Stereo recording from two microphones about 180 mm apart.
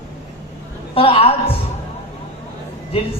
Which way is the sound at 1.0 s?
30° left (ahead or behind).